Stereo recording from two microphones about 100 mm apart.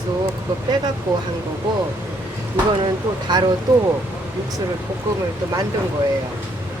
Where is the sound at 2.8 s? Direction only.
50° right (ahead or behind).